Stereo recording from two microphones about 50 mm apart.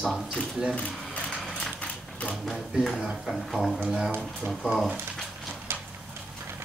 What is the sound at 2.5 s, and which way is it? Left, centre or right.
Speech, centre.